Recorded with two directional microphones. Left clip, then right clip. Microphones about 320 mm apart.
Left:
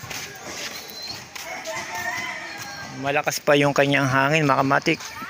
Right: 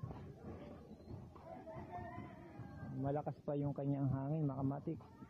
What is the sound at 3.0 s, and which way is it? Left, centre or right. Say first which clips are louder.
Speech: left 19 dB; right.